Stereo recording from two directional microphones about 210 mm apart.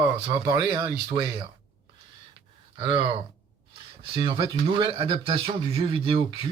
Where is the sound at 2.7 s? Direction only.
25° right (ahead or behind).